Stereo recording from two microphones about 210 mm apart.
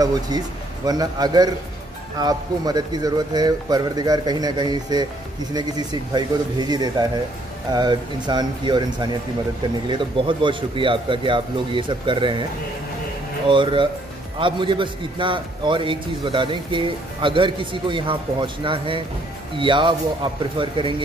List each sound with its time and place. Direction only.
0.3 s a man's voice: 20° right (ahead or behind)
9.8 s a man's voice: 25° right (ahead or behind)
13.5 s a man's voice: 25° right (ahead or behind)